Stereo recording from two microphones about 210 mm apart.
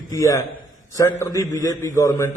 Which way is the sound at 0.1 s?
15° left (ahead or behind).